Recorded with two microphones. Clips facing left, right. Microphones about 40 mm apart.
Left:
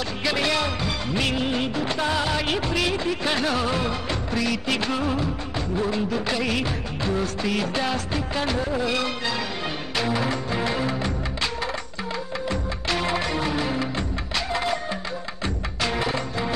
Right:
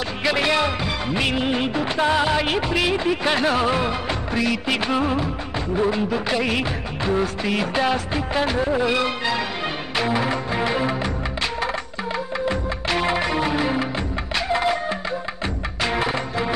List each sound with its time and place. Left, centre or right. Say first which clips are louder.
0.2 s music of bollywood: right 4 dB; centre
9.9 s music: right 3 dB; centre
12.4 s music: right 2 dB; centre
15.8 s music: right 3 dB; centre